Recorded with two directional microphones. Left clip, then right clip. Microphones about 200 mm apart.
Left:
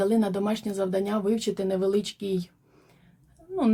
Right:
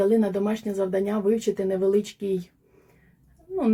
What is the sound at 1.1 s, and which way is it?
Speech, 15° left (ahead or behind).